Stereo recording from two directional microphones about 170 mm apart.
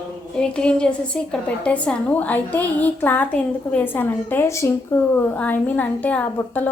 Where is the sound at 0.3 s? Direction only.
5° left (ahead or behind).